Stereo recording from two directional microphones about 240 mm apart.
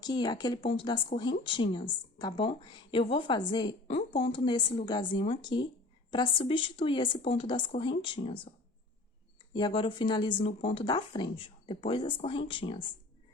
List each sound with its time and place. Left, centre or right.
0.0 s speech: centre
9.5 s speech: centre